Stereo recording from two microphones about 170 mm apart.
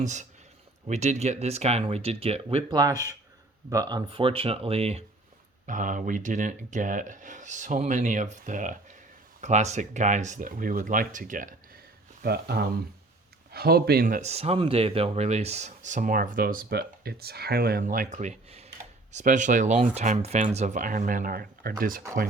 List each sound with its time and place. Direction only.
0.0 s speech: 45° right (ahead or behind)
3.7 s speech: 20° right (ahead or behind)
5.6 s speech: 50° right (ahead or behind)
12.2 s speech: 65° right (ahead or behind)
14.2 s speech: 40° right (ahead or behind); by 22.0 s 55° right (ahead or behind)